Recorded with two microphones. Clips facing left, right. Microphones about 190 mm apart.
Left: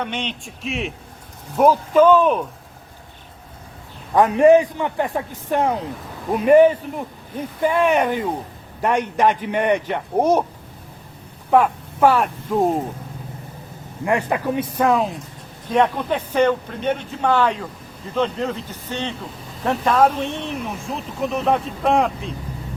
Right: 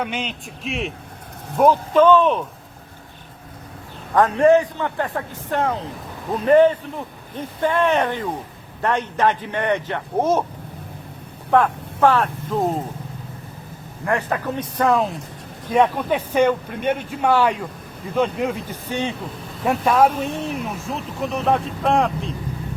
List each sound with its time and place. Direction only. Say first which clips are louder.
0.0 s speech: even; 5° right (ahead or behind)
4.1 s a man's voice: left 2 dB; 15° left (ahead or behind)
11.5 s a man's voice: left 1 dB; 10° left (ahead or behind)
14.0 s a man's voice: left 2 dB; 15° left (ahead or behind)